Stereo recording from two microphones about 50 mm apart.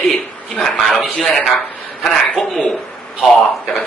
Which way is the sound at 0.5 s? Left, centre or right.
Centre.